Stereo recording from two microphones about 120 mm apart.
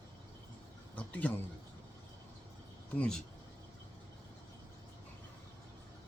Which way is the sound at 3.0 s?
5° left (ahead or behind).